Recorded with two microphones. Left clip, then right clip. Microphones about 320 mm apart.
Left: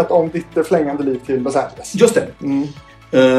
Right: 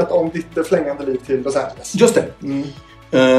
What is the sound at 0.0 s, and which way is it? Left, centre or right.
Speech, centre.